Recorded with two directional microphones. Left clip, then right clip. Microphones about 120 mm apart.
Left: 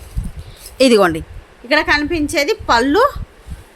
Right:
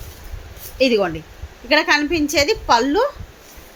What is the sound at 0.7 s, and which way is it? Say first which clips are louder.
Speech: left 6 dB; 75° left (ahead or behind).